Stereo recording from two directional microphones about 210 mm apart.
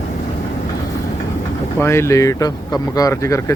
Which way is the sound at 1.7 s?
10° left (ahead or behind).